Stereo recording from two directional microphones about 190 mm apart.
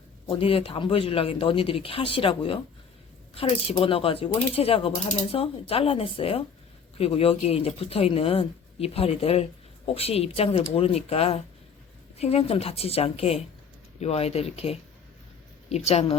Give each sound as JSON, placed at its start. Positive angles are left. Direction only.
{"t": 0.3, "sound": "speech", "side_deg": 30}